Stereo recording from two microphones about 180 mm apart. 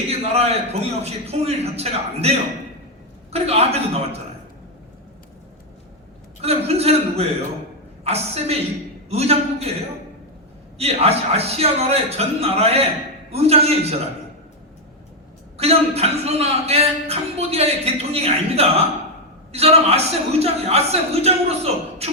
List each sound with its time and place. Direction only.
0.1 s a man's voice: 35° right (ahead or behind)
6.4 s a man's voice: 35° right (ahead or behind)
10.8 s a man's voice: 35° right (ahead or behind)
15.5 s a man's voice: 35° right (ahead or behind)